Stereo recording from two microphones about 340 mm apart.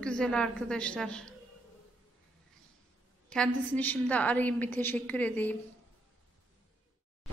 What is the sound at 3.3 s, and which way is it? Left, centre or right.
A woman's voice, centre.